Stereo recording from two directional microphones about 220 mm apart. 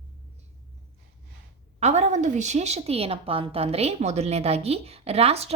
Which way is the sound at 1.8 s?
30° right (ahead or behind).